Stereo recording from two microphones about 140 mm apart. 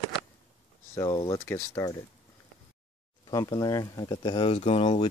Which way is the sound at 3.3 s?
25° left (ahead or behind).